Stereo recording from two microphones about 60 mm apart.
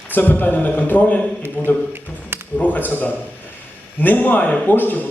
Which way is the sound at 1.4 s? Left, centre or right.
Right.